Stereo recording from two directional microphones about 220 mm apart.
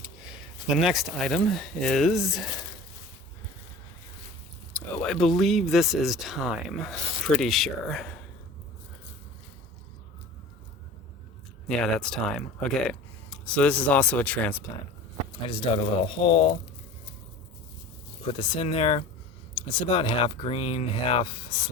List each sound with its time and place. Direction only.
0.0 s speech: 5° right (ahead or behind)
4.7 s speech: 5° left (ahead or behind)
11.7 s speech: 5° left (ahead or behind)
15.4 s speech: 25° left (ahead or behind)
18.3 s speech: 20° left (ahead or behind)